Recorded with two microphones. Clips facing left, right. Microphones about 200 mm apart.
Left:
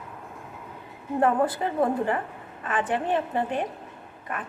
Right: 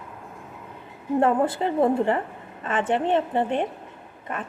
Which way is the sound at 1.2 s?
25° right (ahead or behind).